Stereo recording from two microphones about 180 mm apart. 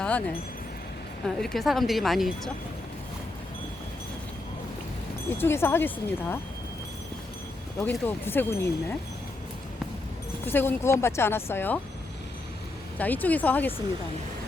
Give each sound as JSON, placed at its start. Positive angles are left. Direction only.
{"t": 1.2, "sound": "speech", "side_deg": 0}
{"t": 5.4, "sound": "speech", "side_deg": 15}
{"t": 7.8, "sound": "speech", "side_deg": 10}
{"t": 10.4, "sound": "speech", "side_deg": 10}
{"t": 13.0, "sound": "speech", "side_deg": 10}